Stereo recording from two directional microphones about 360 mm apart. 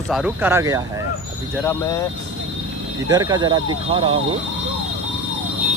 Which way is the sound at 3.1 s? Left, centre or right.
Centre.